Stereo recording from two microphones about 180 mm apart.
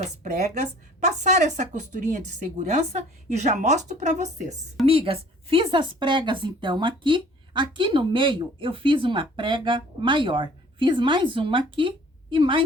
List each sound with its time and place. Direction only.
0.0 s a woman's voice: 40° right (ahead or behind)